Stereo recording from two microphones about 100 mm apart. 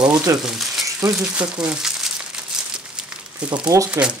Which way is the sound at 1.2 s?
10° right (ahead or behind).